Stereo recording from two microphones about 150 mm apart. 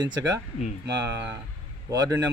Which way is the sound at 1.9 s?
20° right (ahead or behind).